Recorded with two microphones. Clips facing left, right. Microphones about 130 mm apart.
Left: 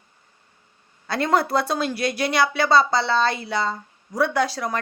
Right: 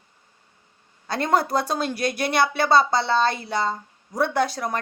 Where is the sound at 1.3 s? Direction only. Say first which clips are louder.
Even; 45° right (ahead or behind).